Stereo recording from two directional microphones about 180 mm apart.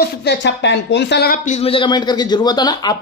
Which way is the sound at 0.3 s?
75° left (ahead or behind).